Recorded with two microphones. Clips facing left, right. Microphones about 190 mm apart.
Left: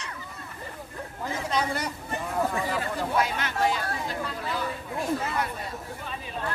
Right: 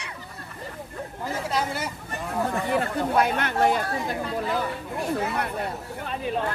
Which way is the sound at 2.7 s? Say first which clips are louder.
Right 4 dB; 60° right (ahead or behind).